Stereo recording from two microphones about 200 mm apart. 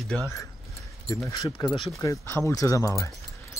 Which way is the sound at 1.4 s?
20° left (ahead or behind).